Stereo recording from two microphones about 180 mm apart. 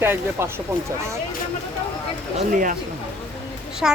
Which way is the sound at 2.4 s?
45° right (ahead or behind).